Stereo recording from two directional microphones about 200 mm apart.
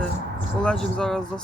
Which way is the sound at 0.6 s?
5° left (ahead or behind).